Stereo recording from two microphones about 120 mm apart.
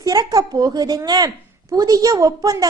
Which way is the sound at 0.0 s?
30° right (ahead or behind).